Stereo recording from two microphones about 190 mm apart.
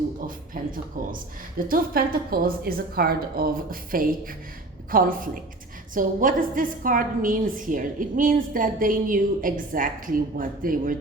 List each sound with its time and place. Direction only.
0.2 s a woman's voice: 45° right (ahead or behind)